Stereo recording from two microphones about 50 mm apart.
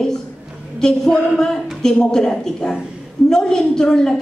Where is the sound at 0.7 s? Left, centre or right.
Centre.